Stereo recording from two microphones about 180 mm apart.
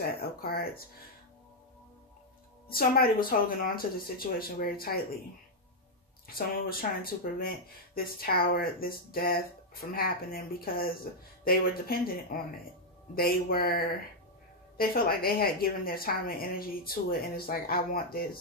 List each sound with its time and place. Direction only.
0.0 s speech: 60° left (ahead or behind)
2.7 s speech: 55° left (ahead or behind)
6.2 s speech: 55° left (ahead or behind)